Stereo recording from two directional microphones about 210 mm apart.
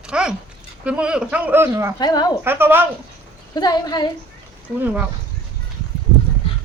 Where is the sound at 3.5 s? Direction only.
20° left (ahead or behind).